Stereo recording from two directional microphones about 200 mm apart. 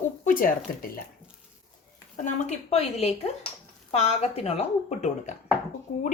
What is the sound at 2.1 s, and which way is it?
A woman's voice, 35° left (ahead or behind).